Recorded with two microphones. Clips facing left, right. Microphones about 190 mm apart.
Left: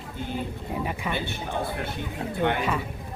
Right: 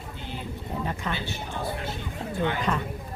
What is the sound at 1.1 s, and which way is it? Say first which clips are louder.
Speech: left 3 dB; 55° left (ahead or behind).